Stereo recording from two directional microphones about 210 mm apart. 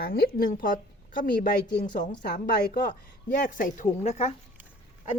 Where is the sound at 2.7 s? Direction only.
40° left (ahead or behind).